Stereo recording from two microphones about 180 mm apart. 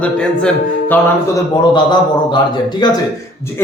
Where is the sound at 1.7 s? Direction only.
25° left (ahead or behind).